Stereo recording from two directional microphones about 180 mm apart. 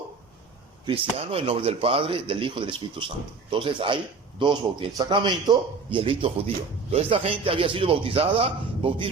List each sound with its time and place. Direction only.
0.9 s a man's voice: 35° right (ahead or behind)